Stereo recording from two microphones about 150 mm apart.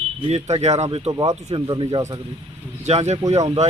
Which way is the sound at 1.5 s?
30° right (ahead or behind).